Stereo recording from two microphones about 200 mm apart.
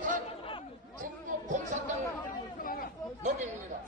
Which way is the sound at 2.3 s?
45° left (ahead or behind).